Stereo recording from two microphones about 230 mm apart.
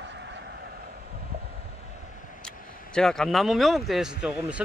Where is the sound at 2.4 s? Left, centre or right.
Centre.